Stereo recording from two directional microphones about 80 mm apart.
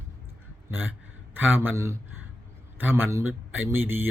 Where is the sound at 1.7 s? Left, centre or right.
Right.